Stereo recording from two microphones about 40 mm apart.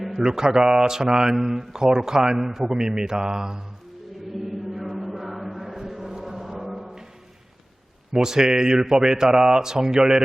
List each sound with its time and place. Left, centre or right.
0.2 s a man's voice: centre
3.1 s a man's voice: centre
4.4 s chant: centre
8.1 s a man's voice: centre